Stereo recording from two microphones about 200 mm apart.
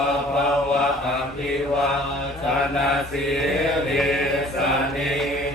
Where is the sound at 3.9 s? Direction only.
Centre (ahead or behind).